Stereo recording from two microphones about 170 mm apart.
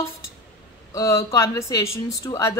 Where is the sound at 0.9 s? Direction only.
20° left (ahead or behind).